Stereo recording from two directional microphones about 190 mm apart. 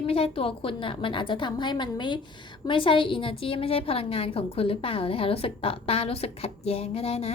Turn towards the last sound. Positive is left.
turn(degrees=30)  # may be behind; listen again after turning